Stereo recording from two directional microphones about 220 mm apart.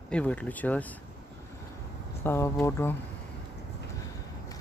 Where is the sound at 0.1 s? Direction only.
5° left (ahead or behind).